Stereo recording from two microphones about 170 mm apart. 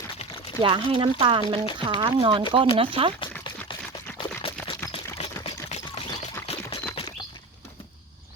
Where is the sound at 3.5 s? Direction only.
30° left (ahead or behind).